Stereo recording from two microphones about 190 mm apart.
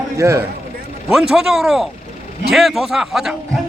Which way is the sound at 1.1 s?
5° right (ahead or behind).